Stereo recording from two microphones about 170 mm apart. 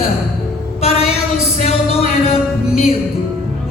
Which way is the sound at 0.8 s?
35° left (ahead or behind).